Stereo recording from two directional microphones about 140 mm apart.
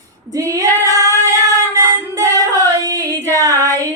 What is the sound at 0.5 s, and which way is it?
Child singing, 25° right (ahead or behind).